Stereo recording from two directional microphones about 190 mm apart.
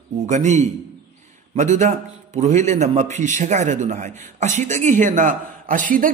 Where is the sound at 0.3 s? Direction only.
40° right (ahead or behind).